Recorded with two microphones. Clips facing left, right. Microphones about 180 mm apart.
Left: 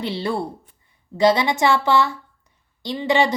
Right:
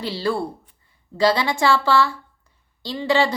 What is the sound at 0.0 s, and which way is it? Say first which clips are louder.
A woman's voice: even; 20° left (ahead or behind).